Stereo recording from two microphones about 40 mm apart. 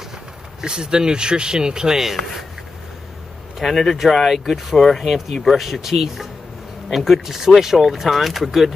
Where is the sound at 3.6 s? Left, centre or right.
Centre.